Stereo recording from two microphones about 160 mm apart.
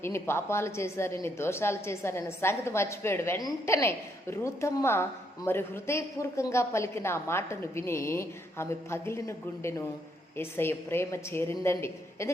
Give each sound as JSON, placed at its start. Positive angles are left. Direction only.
{"t": 0.0, "sound": "a woman's voice", "side_deg": 15}